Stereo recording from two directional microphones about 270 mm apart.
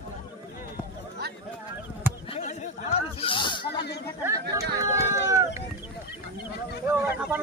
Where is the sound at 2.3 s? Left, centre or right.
Left.